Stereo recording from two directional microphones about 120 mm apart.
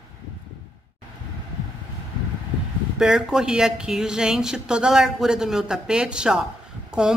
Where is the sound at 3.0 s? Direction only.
5° right (ahead or behind).